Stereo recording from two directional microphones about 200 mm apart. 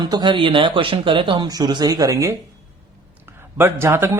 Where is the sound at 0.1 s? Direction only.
20° right (ahead or behind).